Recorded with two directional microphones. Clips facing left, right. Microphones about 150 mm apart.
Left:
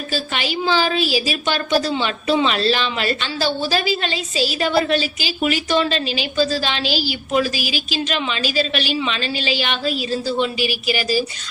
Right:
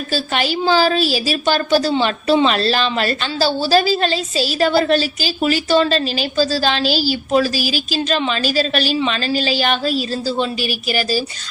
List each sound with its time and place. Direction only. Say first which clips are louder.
0.1 s a woman's voice: right 4 dB; 40° right (ahead or behind)